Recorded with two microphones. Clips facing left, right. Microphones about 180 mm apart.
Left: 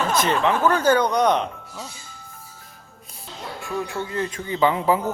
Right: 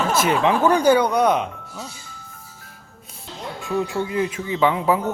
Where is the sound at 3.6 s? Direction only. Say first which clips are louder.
Right 5 dB; 20° right (ahead or behind); by 5.1 s centre (ahead or behind).